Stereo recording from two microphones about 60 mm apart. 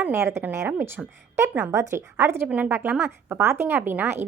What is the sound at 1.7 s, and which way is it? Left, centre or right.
Speech, right.